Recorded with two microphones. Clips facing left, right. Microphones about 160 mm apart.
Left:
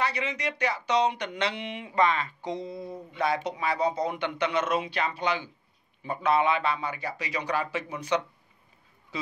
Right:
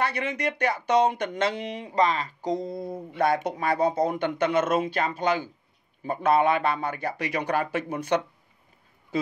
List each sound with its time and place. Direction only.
0.0 s speech: 55° right (ahead or behind)